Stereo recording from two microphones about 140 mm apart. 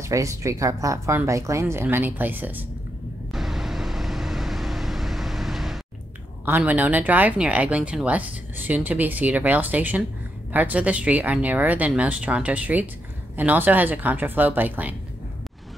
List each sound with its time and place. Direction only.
0.0 s speech: 20° right (ahead or behind)
3.3 s vehicle: 5° right (ahead or behind)
6.4 s speech: 10° right (ahead or behind)